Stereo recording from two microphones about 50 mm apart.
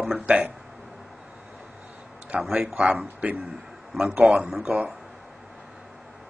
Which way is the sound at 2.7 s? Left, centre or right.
Right.